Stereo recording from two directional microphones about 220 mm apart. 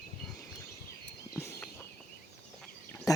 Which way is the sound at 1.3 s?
10° left (ahead or behind).